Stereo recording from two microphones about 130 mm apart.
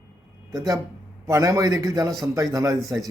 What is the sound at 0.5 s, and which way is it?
A man's voice, 25° right (ahead or behind).